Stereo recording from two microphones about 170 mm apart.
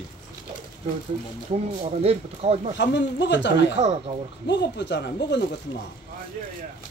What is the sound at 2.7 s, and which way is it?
Speech, 90° left.